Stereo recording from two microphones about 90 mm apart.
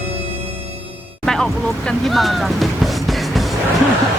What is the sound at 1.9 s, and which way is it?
Speech, centre (ahead or behind).